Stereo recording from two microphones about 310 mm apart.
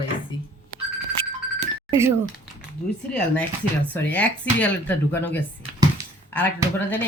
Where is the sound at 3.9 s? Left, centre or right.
Centre.